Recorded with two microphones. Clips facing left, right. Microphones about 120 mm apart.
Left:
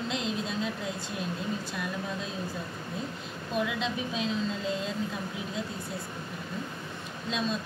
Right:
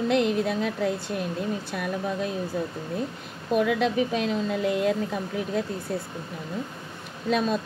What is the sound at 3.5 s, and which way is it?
Speech, 55° right (ahead or behind).